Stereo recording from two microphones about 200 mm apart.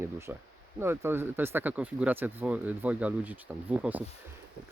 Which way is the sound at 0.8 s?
10° right (ahead or behind).